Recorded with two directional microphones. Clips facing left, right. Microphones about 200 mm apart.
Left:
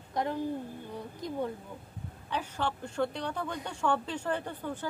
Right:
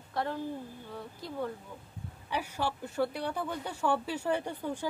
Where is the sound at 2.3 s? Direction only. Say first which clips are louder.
Even; 10° right (ahead or behind).